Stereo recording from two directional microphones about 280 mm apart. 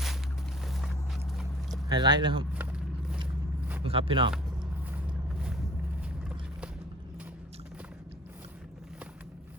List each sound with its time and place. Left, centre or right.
1.9 s speech: centre
2.5 s vehicle: centre
3.8 s speech: centre
4.9 s vehicle: centre
6.1 s a sound: centre